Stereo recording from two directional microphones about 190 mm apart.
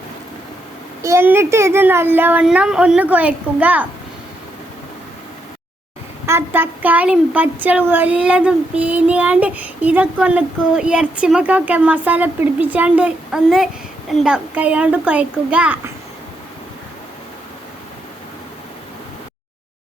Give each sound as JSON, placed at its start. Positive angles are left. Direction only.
{"t": 1.0, "sound": "speech", "side_deg": -15}
{"t": 6.2, "sound": "speech", "side_deg": -10}